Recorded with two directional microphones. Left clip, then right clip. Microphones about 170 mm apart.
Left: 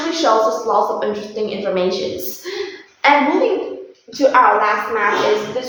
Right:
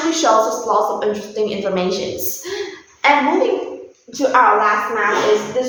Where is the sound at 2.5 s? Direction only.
20° right (ahead or behind).